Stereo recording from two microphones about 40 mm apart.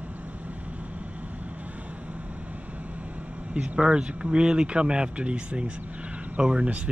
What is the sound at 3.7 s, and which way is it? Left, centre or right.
Speech, right.